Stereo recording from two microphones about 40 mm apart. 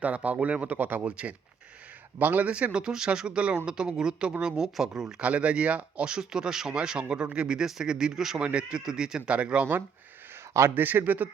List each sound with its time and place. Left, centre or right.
0.0 s speech: right
1.0 s speech: right
2.1 s a man's voice: right
2.7 s a man's voice: centre
5.2 s speech: right
6.1 s a man's voice: centre
6.8 s a man's voice: right
8.4 s speech: right
8.8 s a man's voice: centre
9.3 s speech: right
11.0 s a man's voice: right